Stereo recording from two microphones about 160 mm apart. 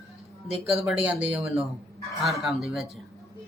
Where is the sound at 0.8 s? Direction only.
10° right (ahead or behind).